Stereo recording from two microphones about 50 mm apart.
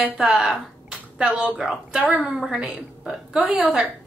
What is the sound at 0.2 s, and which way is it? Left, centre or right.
A woman's voice, centre.